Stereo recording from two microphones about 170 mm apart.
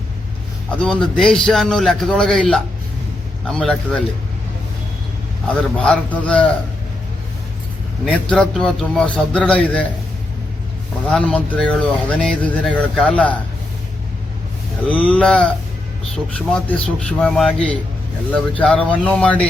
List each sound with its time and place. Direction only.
0.8 s a man's voice: 5° left (ahead or behind)
5.7 s speech: 5° left (ahead or behind)
8.0 s a man's voice: 5° left (ahead or behind)
11.1 s speech: 5° left (ahead or behind)
15.1 s a man's voice: 5° left (ahead or behind)